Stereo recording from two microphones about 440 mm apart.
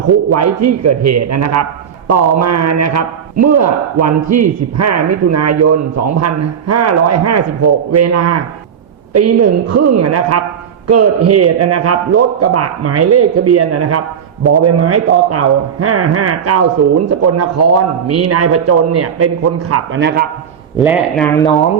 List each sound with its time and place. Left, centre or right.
0.6 s a man's voice: right
20.7 s speech: centre